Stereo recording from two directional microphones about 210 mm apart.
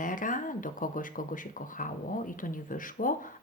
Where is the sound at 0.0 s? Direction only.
40° left (ahead or behind).